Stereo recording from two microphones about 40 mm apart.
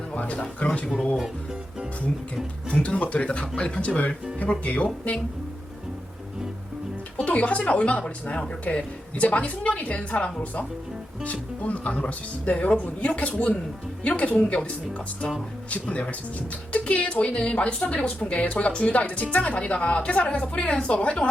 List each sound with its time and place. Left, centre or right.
0.2 s a woman's voice: left
2.8 s a woman's voice: left
7.3 s a woman's voice: left
14.3 s a woman's voice: centre
15.7 s a woman's voice: left